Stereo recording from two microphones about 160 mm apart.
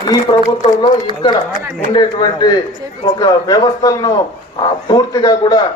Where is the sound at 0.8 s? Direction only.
30° left (ahead or behind).